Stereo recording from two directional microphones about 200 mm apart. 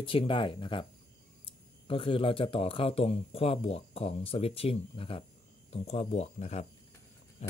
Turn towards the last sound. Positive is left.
turn(degrees=35)  # may be behind; listen again after turning